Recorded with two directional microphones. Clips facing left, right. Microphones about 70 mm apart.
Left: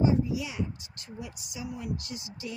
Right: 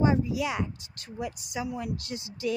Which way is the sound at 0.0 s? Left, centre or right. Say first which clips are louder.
Right 1 dB; right.